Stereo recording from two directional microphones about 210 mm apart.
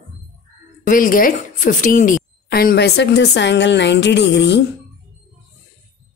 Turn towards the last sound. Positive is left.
turn(degrees=55)  # may be behind; listen again after turning